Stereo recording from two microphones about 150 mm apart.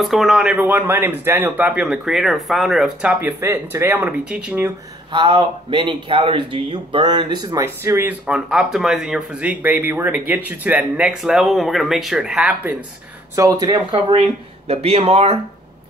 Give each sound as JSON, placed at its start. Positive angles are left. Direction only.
{"t": 0.0, "sound": "speech", "side_deg": 0}
{"t": 5.1, "sound": "speech", "side_deg": -35}
{"t": 13.4, "sound": "speech", "side_deg": -25}